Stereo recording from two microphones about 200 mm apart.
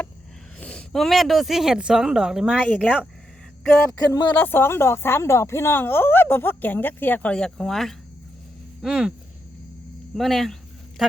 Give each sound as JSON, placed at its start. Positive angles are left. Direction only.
{"t": 0.6, "sound": "speech", "side_deg": 5}
{"t": 4.1, "sound": "speech", "side_deg": 15}
{"t": 10.2, "sound": "a sound", "side_deg": 0}